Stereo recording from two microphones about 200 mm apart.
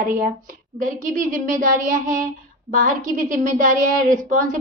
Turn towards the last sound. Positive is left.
turn(degrees=-40)  # may be behind; listen again after turning